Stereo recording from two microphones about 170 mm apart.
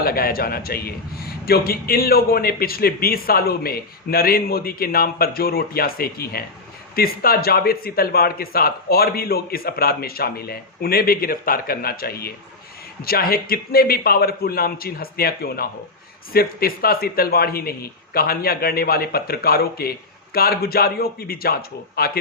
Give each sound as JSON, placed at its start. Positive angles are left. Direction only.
{"t": 0.0, "sound": "a man's voice", "side_deg": 60}